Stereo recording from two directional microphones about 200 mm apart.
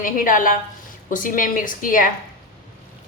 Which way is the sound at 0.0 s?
45° left (ahead or behind).